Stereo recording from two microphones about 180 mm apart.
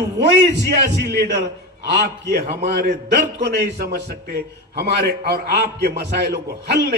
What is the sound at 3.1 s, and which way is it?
A man's voice, 70° right (ahead or behind).